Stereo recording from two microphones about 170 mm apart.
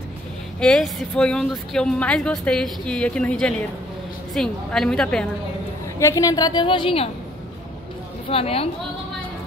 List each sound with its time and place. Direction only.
0.6 s speech: 5° left (ahead or behind)
5.9 s a woman's voice: 20° left (ahead or behind)
8.3 s a woman's voice: 35° left (ahead or behind)